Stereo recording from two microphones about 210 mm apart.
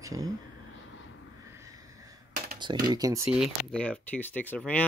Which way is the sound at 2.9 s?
15° right (ahead or behind).